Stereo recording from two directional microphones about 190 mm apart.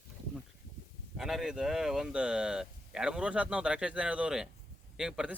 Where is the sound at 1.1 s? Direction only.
Centre (ahead or behind).